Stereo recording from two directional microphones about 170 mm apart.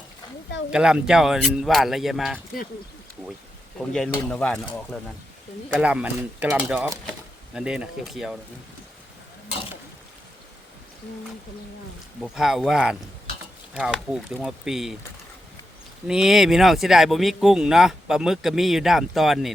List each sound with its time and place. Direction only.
0.7 s speech: 5° right (ahead or behind)
3.8 s speech: 5° left (ahead or behind)
5.8 s speech: 5° right (ahead or behind)
12.2 s speech: 5° right (ahead or behind)
16.0 s speech: 5° right (ahead or behind)